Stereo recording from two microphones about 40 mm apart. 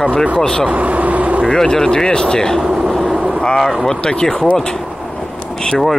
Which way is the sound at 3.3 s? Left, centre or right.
Centre.